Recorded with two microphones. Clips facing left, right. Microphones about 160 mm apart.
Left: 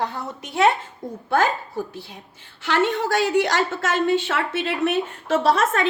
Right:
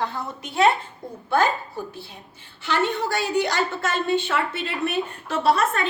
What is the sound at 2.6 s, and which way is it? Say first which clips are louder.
A woman's voice: left 2 dB; 90° left.